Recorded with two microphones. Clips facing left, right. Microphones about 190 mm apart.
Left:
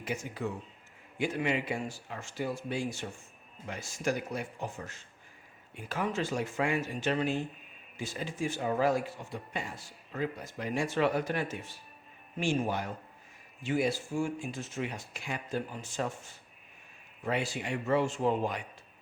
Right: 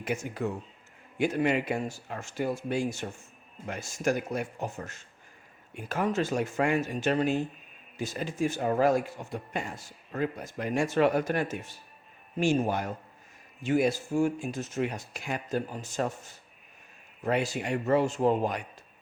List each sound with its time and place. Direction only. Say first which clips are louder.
0.1 s speech: right 4 dB; 45° right (ahead or behind)